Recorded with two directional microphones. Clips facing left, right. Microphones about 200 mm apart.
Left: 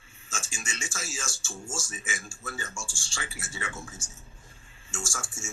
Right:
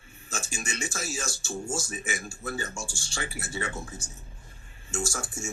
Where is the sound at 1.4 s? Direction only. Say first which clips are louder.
Right 6 dB; 40° right (ahead or behind).